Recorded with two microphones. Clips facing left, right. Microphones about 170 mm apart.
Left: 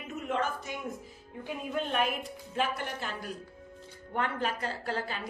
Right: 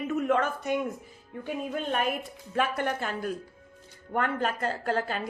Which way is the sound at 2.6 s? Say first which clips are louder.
Right 5 dB; 55° right (ahead or behind).